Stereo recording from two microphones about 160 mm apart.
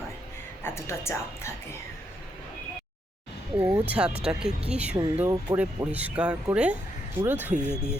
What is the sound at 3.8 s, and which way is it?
Speech, 10° right (ahead or behind).